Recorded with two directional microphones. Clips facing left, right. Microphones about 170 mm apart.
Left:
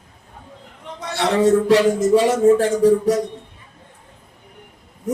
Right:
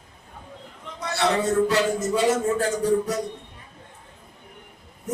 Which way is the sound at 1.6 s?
90° left.